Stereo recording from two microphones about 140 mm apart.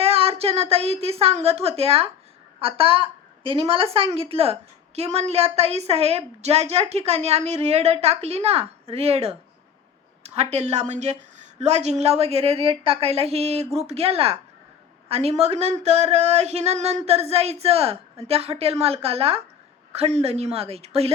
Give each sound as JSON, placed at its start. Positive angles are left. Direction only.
{"t": 0.0, "sound": "a woman's voice", "side_deg": -45}